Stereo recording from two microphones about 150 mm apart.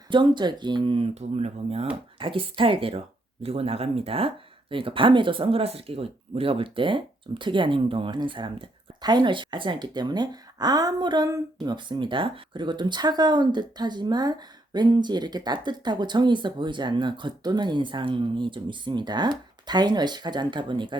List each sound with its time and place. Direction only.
0.1 s speech: 30° right (ahead or behind)